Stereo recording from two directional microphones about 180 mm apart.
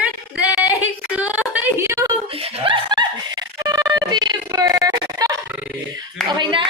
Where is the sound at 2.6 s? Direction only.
25° right (ahead or behind).